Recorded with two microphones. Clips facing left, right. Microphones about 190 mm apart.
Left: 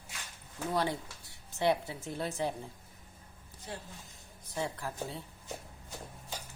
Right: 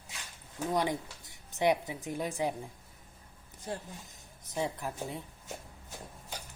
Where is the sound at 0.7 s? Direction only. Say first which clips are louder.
Right 1 dB; 15° right (ahead or behind).